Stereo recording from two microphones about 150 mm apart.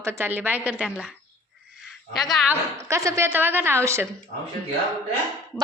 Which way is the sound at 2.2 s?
Centre (ahead or behind).